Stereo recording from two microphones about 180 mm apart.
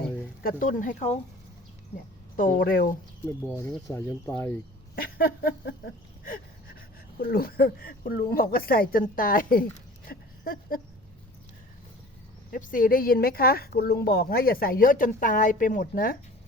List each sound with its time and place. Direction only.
0.4 s speech: 45° left (ahead or behind)
2.3 s speech: 50° left (ahead or behind)
3.8 s speech: 10° left (ahead or behind)
4.9 s a sound: 55° left (ahead or behind)
12.5 s a woman's voice: 50° left (ahead or behind)